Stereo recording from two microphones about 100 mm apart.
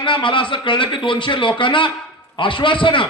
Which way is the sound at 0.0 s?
55° left (ahead or behind).